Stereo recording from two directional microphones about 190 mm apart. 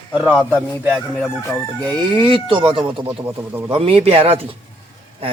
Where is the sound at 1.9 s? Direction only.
25° right (ahead or behind).